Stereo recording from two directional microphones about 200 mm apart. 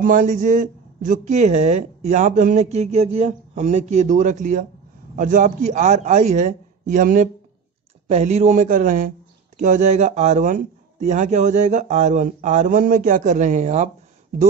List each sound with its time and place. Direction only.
0.0 s speech: 45° right (ahead or behind)